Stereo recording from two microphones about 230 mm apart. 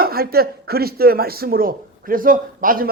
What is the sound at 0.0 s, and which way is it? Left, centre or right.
Speech, right.